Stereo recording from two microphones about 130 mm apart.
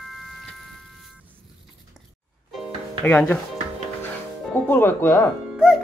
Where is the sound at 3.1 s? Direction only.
15° left (ahead or behind).